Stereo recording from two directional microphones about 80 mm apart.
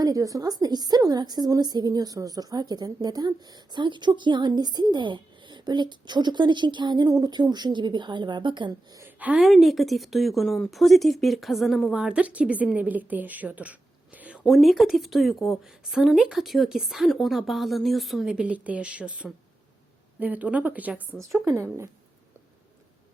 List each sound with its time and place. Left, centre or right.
0.0 s a woman's voice: right
9.0 s a sound: centre
9.4 s a woman's voice: centre
14.5 s speech: centre
18.3 s a woman's voice: centre
21.4 s speech: right